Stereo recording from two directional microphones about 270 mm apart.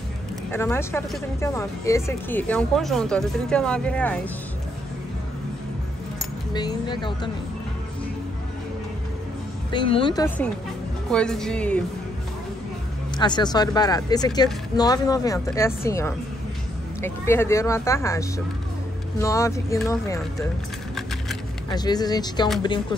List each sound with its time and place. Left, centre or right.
0.5 s speech: centre
6.5 s speech: centre
9.7 s speech: centre
13.2 s speech: centre
21.6 s speech: centre